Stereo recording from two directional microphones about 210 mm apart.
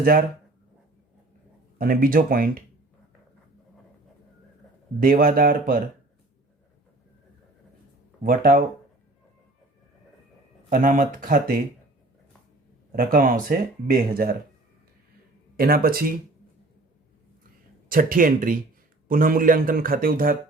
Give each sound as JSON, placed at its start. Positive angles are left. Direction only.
{"t": 0.0, "sound": "speech", "side_deg": -45}
{"t": 1.8, "sound": "speech", "side_deg": -45}
{"t": 4.9, "sound": "speech", "side_deg": -40}
{"t": 8.2, "sound": "speech", "side_deg": -40}
{"t": 10.7, "sound": "speech", "side_deg": -40}
{"t": 13.0, "sound": "speech", "side_deg": -40}
{"t": 15.5, "sound": "speech", "side_deg": -45}
{"t": 17.8, "sound": "speech", "side_deg": -40}